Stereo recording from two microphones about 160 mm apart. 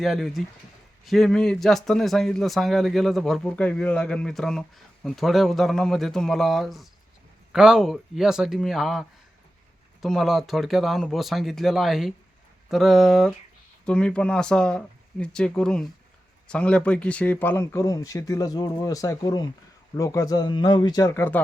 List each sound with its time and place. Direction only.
0.0 s speech: centre (ahead or behind)